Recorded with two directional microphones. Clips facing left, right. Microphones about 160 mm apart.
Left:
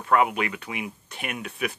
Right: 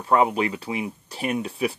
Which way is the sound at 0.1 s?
30° right (ahead or behind).